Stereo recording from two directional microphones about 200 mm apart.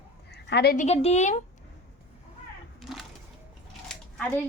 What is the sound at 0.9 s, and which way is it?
Speech, 35° left (ahead or behind).